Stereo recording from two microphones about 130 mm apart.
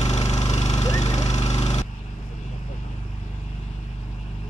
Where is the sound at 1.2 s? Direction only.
60° left (ahead or behind).